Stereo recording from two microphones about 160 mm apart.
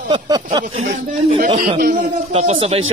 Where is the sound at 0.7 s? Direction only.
45° right (ahead or behind).